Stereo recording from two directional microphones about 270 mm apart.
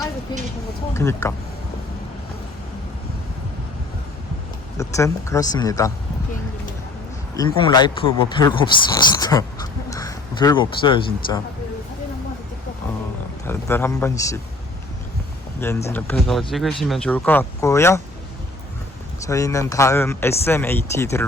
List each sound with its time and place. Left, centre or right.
0.9 s speech: centre
4.8 s speech: centre
7.3 s speech: centre
13.5 s speech: centre
15.6 s speech: centre
19.2 s speech: centre